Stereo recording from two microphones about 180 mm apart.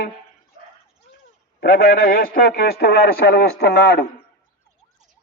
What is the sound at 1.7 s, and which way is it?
A man's voice, 55° left (ahead or behind).